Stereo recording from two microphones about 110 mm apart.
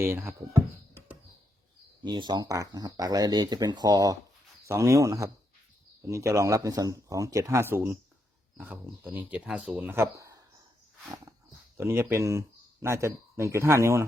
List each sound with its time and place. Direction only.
0.0 s speech: 25° right (ahead or behind)
2.0 s speech: 40° right (ahead or behind)
7.6 s speech: 20° right (ahead or behind); by 9.8 s 5° right (ahead or behind)
9.8 s speech: 25° right (ahead or behind)
11.8 s speech: 25° right (ahead or behind)